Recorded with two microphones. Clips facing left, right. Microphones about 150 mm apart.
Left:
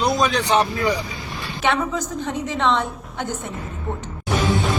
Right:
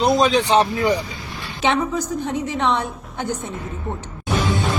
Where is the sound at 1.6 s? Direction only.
15° right (ahead or behind).